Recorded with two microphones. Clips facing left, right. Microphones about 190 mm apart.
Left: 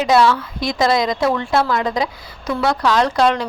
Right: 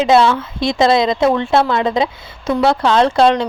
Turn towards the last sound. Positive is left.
turn(degrees=-25)  # may be behind; listen again after turning